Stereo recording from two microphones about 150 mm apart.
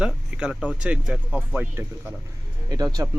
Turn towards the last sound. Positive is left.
turn(degrees=-25)  # may be behind; listen again after turning